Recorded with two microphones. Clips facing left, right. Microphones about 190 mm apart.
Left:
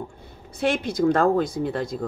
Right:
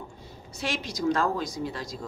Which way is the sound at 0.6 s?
55° left (ahead or behind).